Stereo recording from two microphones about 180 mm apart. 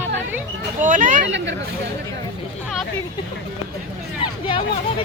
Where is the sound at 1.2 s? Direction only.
90° right.